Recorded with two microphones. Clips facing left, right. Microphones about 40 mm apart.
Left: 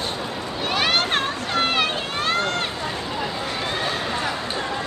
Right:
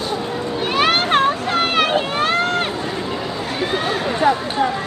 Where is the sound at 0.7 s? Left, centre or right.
Centre.